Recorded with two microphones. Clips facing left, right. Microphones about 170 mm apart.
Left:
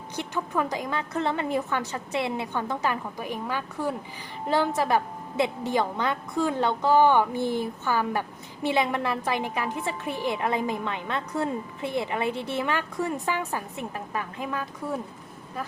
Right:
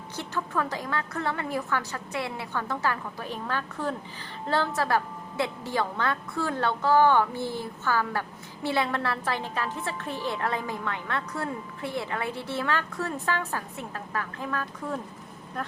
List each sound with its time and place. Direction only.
0.2 s a woman's voice: 15° left (ahead or behind)